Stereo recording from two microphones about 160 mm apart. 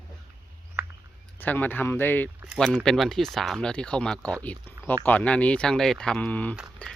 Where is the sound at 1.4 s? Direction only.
10° left (ahead or behind).